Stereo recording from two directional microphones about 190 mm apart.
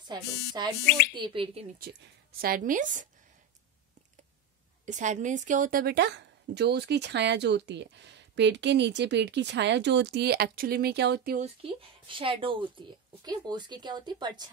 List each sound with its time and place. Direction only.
0.0 s a woman's voice: 25° right (ahead or behind)
2.3 s a woman's voice: 50° right (ahead or behind)
4.8 s speech: 40° right (ahead or behind); by 11.3 s 60° right (ahead or behind)
11.3 s a woman's voice: 30° right (ahead or behind)